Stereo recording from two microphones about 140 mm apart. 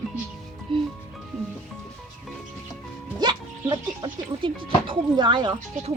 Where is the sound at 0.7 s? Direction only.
35° right (ahead or behind).